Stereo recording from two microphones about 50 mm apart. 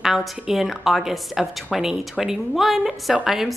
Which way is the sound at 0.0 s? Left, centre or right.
Centre.